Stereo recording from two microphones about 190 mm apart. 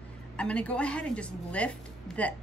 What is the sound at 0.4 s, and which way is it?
A woman's voice, 5° left (ahead or behind).